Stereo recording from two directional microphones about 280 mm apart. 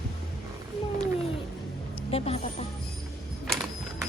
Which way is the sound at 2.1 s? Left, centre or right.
Left.